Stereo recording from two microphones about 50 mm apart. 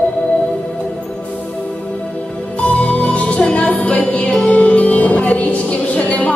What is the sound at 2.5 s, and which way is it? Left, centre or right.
Music, left.